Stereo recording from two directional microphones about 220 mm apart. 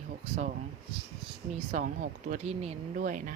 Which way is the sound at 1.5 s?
35° right (ahead or behind).